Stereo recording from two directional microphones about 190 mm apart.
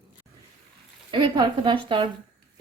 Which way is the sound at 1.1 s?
25° right (ahead or behind).